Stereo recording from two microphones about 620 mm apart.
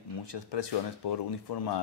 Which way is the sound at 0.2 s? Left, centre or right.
Left.